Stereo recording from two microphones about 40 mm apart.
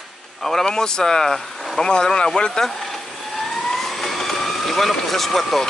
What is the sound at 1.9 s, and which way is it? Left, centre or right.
Speech, centre.